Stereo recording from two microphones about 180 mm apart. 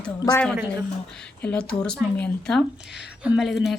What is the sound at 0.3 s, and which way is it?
Speech, 20° left (ahead or behind).